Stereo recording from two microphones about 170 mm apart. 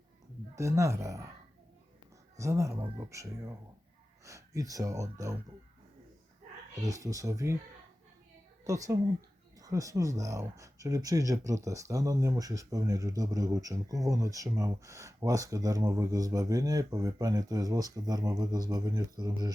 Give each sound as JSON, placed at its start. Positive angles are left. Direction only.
{"t": 0.5, "sound": "speech", "side_deg": -20}
{"t": 2.4, "sound": "speech", "side_deg": -20}
{"t": 6.8, "sound": "speech", "side_deg": -20}
{"t": 8.6, "sound": "speech", "side_deg": -20}